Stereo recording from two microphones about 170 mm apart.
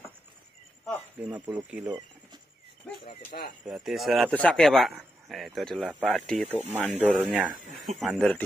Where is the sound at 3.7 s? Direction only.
Centre (ahead or behind).